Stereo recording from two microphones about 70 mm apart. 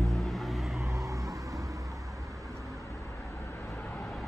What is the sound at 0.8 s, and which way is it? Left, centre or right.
Vehicle, right.